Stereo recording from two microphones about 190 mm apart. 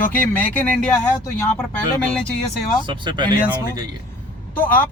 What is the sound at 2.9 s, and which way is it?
Speech, 25° right (ahead or behind).